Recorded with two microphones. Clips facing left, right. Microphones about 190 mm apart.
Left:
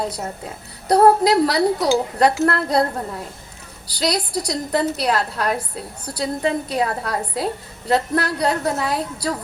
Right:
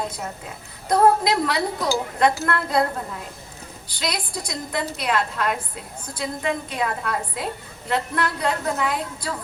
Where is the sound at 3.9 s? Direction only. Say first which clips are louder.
Left 7 dB; 35° left (ahead or behind).